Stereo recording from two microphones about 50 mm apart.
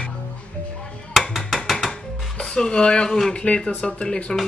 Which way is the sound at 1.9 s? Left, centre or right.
Centre.